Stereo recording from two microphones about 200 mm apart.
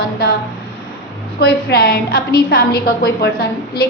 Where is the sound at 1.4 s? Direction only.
50° left (ahead or behind).